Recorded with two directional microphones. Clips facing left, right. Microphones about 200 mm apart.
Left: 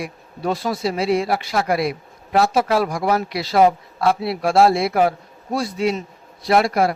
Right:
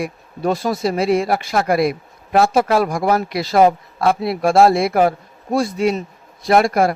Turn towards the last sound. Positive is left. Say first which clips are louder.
# right 2 dB
turn(degrees=-50)  # may be behind; listen again after turning